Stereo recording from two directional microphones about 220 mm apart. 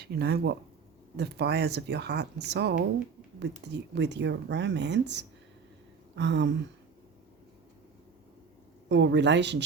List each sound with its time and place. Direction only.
0.0 s speech: 45° right (ahead or behind)
8.9 s speech: 55° right (ahead or behind)